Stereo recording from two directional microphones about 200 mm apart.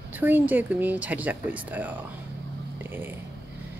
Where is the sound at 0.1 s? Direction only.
10° right (ahead or behind).